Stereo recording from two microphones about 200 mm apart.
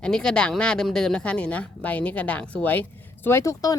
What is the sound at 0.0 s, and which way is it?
Speech, 5° left (ahead or behind).